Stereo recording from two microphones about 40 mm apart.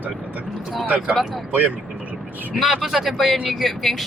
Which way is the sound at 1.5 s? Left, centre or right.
Right.